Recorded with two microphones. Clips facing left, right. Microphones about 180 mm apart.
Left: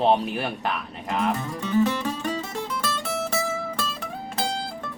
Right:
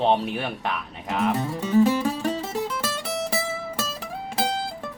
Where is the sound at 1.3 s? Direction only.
25° right (ahead or behind).